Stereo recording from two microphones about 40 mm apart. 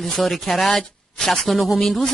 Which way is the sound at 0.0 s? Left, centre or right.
Centre.